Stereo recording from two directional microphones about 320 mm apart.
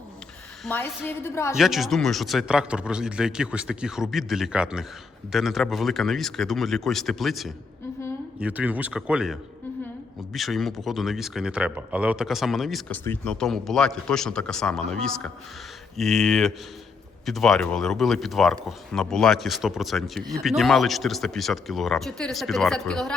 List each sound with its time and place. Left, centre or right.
0.6 s speech: centre